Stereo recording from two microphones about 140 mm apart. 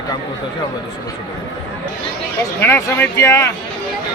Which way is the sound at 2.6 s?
15° left (ahead or behind).